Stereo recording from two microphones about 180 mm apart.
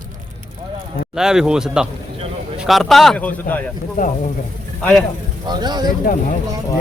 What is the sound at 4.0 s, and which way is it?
Speech, 50° left (ahead or behind).